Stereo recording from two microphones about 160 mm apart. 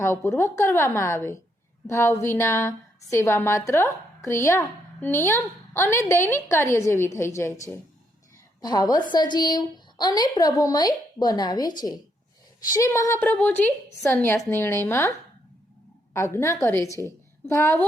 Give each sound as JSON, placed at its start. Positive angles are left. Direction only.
{"t": 0.0, "sound": "a woman's voice", "side_deg": 15}
{"t": 16.1, "sound": "a woman's voice", "side_deg": 15}